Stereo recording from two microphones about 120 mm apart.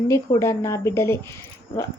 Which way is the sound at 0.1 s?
25° left (ahead or behind).